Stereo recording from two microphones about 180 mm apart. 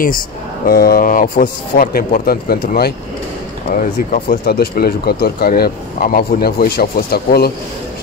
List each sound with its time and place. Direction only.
0.7 s speech: 55° left (ahead or behind)